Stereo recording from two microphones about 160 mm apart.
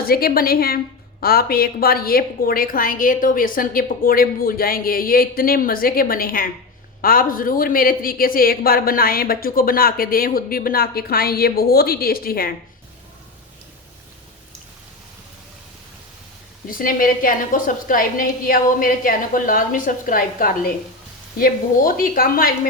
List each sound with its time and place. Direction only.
0.0 s a man's voice: 70° left (ahead or behind)
16.6 s a woman's voice: 60° left (ahead or behind)